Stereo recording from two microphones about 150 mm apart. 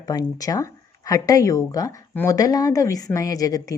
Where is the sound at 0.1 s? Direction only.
25° left (ahead or behind).